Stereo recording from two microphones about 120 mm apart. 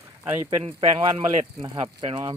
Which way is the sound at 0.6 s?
45° right (ahead or behind).